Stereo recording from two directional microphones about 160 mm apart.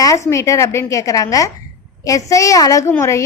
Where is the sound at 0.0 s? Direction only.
20° left (ahead or behind).